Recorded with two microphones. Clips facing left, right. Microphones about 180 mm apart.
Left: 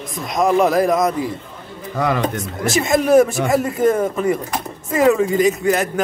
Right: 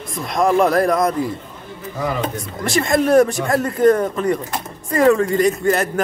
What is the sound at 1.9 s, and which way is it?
Speech, 80° left.